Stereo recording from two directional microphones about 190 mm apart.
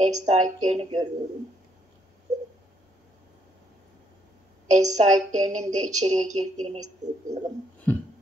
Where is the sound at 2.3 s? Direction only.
20° right (ahead or behind).